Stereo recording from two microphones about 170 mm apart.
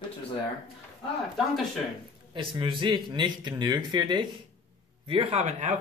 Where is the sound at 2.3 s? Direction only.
30° right (ahead or behind).